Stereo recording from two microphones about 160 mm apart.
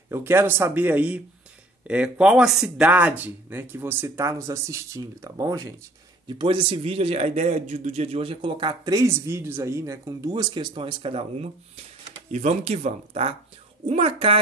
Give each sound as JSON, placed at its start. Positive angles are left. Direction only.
{"t": 0.1, "sound": "a man's voice", "side_deg": -15}